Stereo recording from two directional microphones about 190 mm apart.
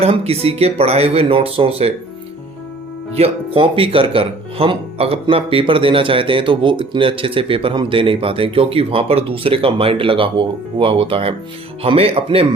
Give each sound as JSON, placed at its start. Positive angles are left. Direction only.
{"t": 0.0, "sound": "speech", "side_deg": -30}
{"t": 3.2, "sound": "speech", "side_deg": -30}